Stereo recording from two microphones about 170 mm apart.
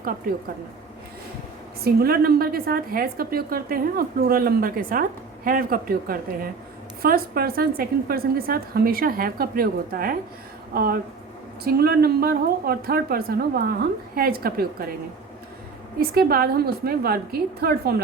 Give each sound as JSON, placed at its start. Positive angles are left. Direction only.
{"t": 1.8, "sound": "a woman's voice", "side_deg": -65}
{"t": 11.6, "sound": "a woman's voice", "side_deg": -65}
{"t": 16.0, "sound": "a woman's voice", "side_deg": -65}